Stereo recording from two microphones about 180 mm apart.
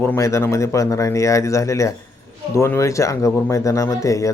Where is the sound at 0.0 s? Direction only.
15° left (ahead or behind).